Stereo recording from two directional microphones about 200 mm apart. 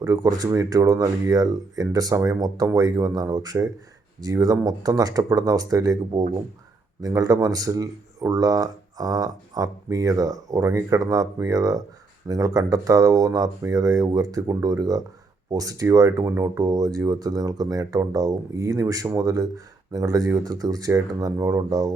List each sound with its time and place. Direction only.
0.0 s speech: 20° right (ahead or behind)